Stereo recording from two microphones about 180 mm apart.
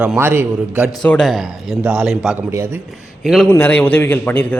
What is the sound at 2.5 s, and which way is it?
Speech, 15° right (ahead or behind).